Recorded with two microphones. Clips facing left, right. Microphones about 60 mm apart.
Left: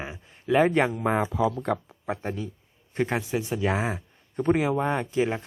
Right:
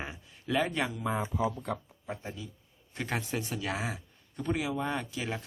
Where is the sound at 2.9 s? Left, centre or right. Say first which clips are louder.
Left 8 dB; left.